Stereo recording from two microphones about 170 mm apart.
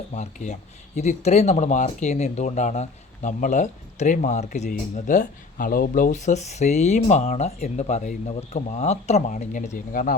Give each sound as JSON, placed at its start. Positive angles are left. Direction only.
{"t": 0.2, "sound": "speech", "side_deg": 45}